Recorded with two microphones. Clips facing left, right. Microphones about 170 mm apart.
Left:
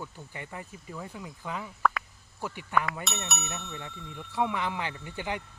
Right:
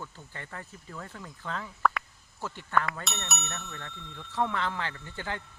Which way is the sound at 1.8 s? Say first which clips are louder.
Even; centre (ahead or behind).